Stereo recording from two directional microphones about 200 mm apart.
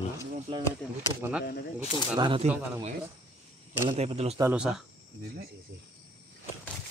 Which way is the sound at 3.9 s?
30° right (ahead or behind).